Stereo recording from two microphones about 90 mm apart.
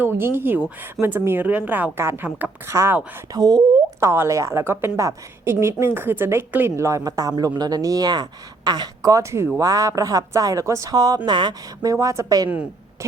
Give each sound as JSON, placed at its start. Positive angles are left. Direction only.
{"t": 0.0, "sound": "speech", "side_deg": -25}
{"t": 2.0, "sound": "a woman's voice", "side_deg": -25}
{"t": 3.3, "sound": "speech", "side_deg": -50}
{"t": 4.0, "sound": "a woman's voice", "side_deg": -30}
{"t": 11.3, "sound": "speech", "side_deg": -55}
{"t": 11.9, "sound": "a woman's voice", "side_deg": -40}